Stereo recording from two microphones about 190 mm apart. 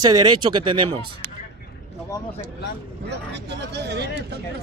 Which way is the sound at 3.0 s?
60° right (ahead or behind).